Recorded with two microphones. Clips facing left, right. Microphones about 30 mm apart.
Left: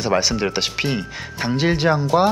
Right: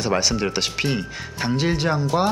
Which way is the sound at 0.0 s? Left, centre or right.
Centre.